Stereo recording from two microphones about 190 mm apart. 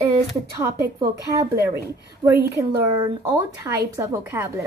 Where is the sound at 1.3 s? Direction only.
15° right (ahead or behind).